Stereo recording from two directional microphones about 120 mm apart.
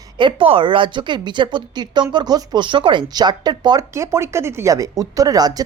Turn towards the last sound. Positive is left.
turn(degrees=-30)  # may be behind; listen again after turning